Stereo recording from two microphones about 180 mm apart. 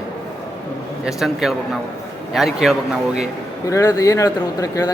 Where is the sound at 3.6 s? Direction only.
20° left (ahead or behind).